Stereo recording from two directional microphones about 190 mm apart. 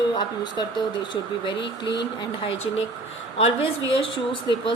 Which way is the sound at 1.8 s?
25° left (ahead or behind).